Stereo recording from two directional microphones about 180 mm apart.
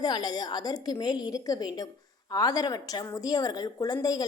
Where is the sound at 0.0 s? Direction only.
25° left (ahead or behind).